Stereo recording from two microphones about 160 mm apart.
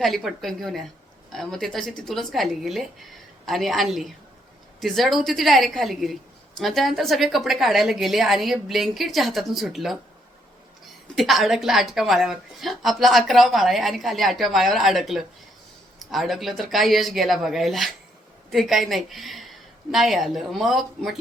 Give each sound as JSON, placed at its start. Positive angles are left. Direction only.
{"t": 0.0, "sound": "a woman's voice", "side_deg": 0}
{"t": 11.1, "sound": "a woman's voice", "side_deg": 0}